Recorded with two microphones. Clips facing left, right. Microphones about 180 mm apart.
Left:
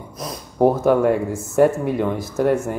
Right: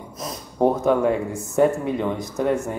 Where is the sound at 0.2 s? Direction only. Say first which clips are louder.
Left 3 dB; 5° left (ahead or behind).